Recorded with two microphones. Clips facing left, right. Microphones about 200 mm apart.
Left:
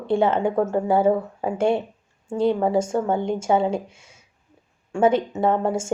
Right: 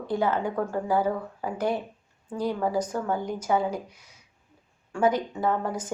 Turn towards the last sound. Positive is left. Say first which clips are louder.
# left 6 dB
turn(degrees=25)  # may be behind; listen again after turning